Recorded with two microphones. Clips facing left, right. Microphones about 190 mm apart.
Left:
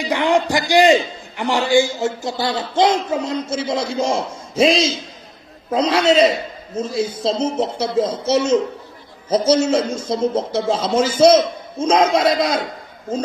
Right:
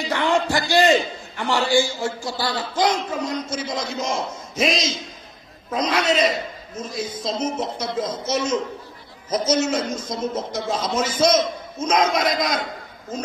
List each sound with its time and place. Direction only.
0.0 s a man's voice: 15° left (ahead or behind)